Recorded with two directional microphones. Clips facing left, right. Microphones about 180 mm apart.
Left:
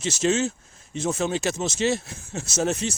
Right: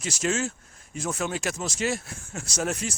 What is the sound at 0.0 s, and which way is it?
Speech, 25° left (ahead or behind).